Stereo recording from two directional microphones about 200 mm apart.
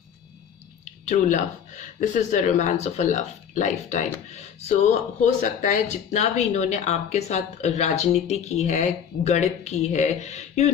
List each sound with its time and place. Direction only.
1.0 s speech: 35° left (ahead or behind)